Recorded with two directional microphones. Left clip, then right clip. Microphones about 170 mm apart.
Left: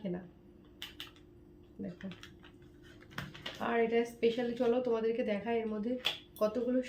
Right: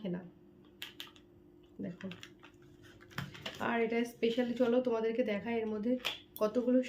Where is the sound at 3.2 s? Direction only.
25° right (ahead or behind).